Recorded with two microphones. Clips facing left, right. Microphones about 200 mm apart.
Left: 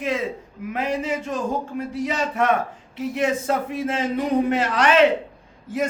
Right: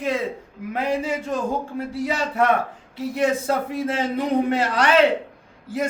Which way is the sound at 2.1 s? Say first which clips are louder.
Right 1 dB; 35° right (ahead or behind).